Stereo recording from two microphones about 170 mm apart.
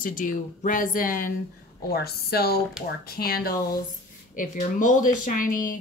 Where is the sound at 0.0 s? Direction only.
50° left (ahead or behind).